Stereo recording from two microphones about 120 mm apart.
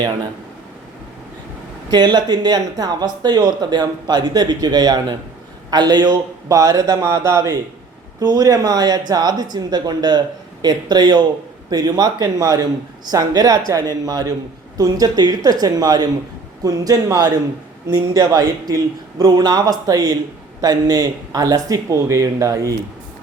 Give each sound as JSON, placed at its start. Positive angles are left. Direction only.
{"t": 1.9, "sound": "speech", "side_deg": -35}